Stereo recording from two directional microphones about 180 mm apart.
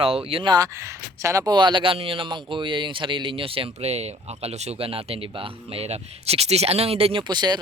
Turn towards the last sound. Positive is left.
turn(degrees=-25)  # may be behind; listen again after turning